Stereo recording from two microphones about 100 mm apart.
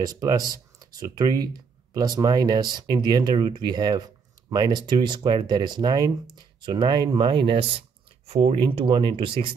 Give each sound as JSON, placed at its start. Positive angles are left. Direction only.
{"t": 0.0, "sound": "speech", "side_deg": -40}